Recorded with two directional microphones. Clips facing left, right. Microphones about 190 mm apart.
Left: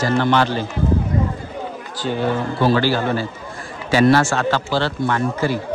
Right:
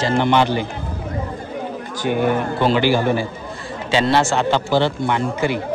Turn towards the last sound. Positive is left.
turn(degrees=-20)  # may be behind; listen again after turning